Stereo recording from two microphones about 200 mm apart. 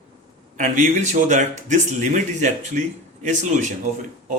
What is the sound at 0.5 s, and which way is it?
Speech, 40° right (ahead or behind).